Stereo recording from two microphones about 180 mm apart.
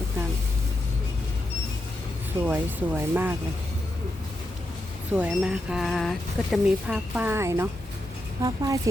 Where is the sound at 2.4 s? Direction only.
10° right (ahead or behind).